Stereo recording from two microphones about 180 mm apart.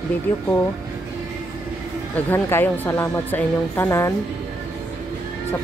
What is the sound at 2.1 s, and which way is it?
Speech, 10° left (ahead or behind).